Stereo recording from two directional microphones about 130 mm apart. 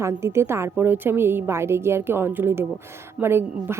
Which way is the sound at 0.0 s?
20° right (ahead or behind).